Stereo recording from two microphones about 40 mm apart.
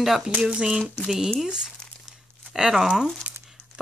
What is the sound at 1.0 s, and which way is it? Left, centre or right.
Speech, centre.